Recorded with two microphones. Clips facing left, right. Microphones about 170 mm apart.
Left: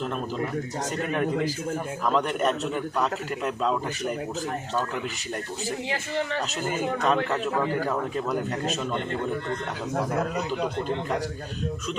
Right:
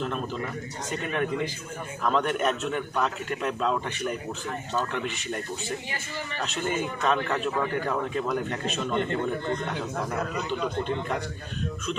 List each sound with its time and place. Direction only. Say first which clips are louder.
2.0 s a man's voice: even; centre (ahead or behind)
7.0 s a man's voice: left 1 dB; centre (ahead or behind)
9.9 s a man's voice: left 3 dB; 40° left (ahead or behind)